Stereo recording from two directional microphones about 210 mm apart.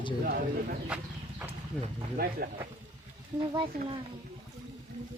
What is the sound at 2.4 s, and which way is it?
Speech, 50° right (ahead or behind).